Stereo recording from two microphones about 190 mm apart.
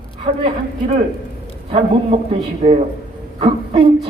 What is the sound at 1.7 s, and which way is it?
A man's voice, 30° right (ahead or behind).